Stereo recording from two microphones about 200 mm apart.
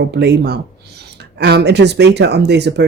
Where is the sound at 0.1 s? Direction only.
55° right (ahead or behind).